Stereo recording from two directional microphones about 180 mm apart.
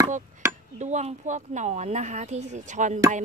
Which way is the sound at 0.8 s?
40° right (ahead or behind).